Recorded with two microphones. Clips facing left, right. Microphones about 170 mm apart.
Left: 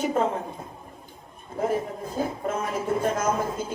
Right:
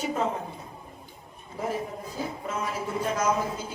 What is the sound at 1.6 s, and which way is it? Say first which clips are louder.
Speech: left 5 dB; 50° left (ahead or behind).